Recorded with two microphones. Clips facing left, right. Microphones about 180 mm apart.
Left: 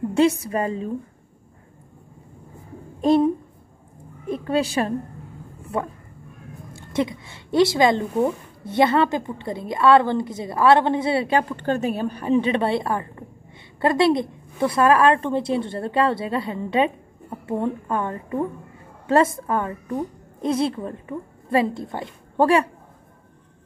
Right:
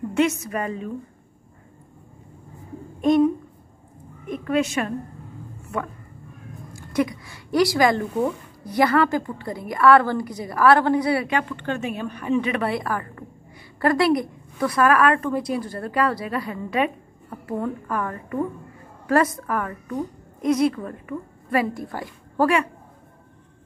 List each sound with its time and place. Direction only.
0.1 s a woman's voice: 30° left (ahead or behind)
3.0 s a woman's voice: 30° left (ahead or behind)
4.3 s a woman's voice: 30° left (ahead or behind)
5.6 s a sound: 30° left (ahead or behind)
6.7 s a woman's voice: 25° left (ahead or behind)